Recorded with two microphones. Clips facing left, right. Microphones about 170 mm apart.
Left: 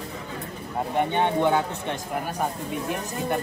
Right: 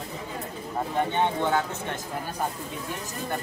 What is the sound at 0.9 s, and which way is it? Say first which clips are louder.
Speech: left 3 dB; 15° left (ahead or behind).